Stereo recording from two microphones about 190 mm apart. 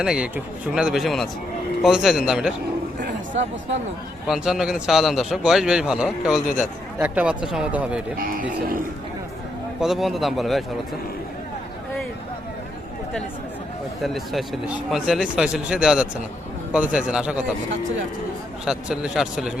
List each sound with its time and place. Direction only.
0.0 s a man's voice: 5° right (ahead or behind)
4.3 s a man's voice: 5° right (ahead or behind)
8.2 s speech: 50° right (ahead or behind)
9.8 s a man's voice: centre (ahead or behind)
14.0 s a man's voice: centre (ahead or behind)
18.6 s a man's voice: 5° right (ahead or behind)